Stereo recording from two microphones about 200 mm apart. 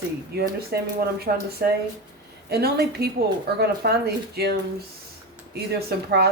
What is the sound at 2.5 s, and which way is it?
Speech, 50° right (ahead or behind).